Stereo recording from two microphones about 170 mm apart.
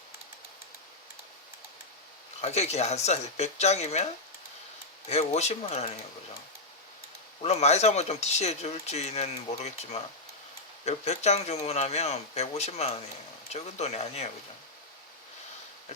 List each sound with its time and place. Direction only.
2.4 s speech: 40° left (ahead or behind)
7.4 s speech: 40° left (ahead or behind)